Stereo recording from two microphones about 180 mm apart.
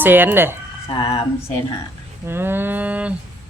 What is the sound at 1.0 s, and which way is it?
Speech, 30° left (ahead or behind).